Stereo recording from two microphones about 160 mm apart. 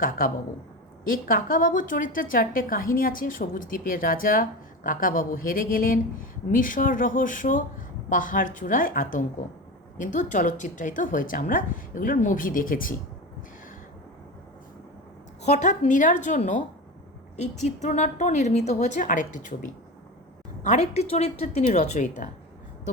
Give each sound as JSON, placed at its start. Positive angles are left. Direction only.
{"t": 0.2, "sound": "a woman's voice", "side_deg": 60}
{"t": 15.4, "sound": "a woman's voice", "side_deg": 45}